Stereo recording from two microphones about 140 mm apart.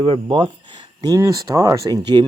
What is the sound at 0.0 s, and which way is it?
Speech, 40° right (ahead or behind).